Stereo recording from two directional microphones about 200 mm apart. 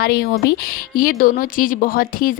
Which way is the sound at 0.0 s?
50° left (ahead or behind).